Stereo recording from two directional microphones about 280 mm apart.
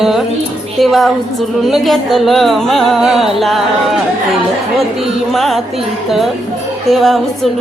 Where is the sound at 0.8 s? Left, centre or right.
Centre.